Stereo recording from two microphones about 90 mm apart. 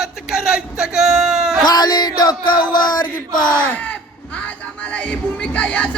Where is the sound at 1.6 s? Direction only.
50° left (ahead or behind).